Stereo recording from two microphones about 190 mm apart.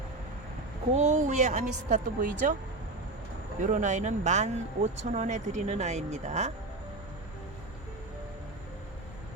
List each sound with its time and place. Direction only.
0.9 s a woman's voice: 40° right (ahead or behind)
3.6 s a woman's voice: 40° right (ahead or behind)